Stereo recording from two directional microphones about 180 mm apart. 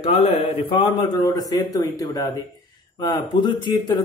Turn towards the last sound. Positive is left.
turn(degrees=25)  # may be behind; listen again after turning